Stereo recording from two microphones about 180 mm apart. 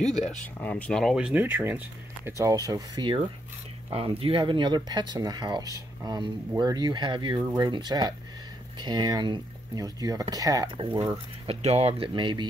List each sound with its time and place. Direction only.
0.0 s speech: centre (ahead or behind); by 11.1 s 25° right (ahead or behind)
11.4 s speech: 35° right (ahead or behind)